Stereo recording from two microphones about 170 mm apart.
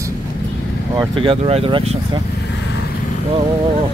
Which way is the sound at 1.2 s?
35° right (ahead or behind).